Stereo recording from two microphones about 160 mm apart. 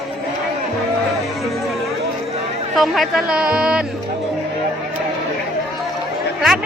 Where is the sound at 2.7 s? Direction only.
Centre (ahead or behind).